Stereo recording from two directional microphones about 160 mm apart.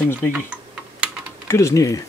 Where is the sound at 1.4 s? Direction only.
20° left (ahead or behind).